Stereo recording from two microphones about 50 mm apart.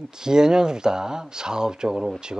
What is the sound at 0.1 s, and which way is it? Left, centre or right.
Speech, centre.